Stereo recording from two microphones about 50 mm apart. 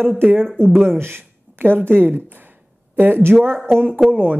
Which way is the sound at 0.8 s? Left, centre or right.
Right.